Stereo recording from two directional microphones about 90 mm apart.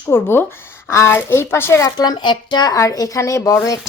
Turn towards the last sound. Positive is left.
turn(degrees=35)  # may be behind; listen again after turning